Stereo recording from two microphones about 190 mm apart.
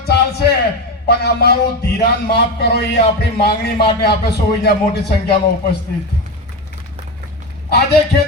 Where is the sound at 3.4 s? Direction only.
55° left (ahead or behind).